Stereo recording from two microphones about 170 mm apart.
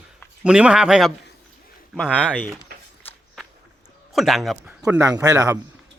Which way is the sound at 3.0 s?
5° left (ahead or behind).